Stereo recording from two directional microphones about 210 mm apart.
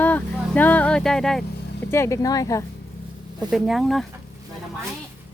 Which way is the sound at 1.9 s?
15° left (ahead or behind).